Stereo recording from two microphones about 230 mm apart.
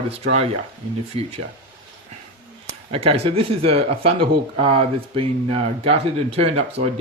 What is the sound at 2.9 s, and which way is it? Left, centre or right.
Speech, right.